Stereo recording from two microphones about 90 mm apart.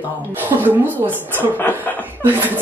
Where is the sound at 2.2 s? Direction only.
20° right (ahead or behind).